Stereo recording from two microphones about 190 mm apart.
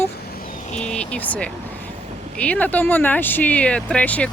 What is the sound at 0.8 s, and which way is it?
Speech, 5° left (ahead or behind).